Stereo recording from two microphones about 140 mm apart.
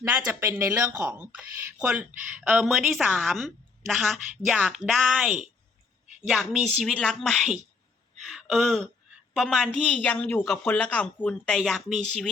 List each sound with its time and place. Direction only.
0.0 s speech: 20° right (ahead or behind); by 11.9 s centre (ahead or behind)